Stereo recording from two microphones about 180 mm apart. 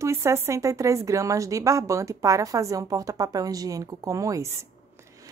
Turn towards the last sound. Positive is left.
turn(degrees=-15)  # may be behind; listen again after turning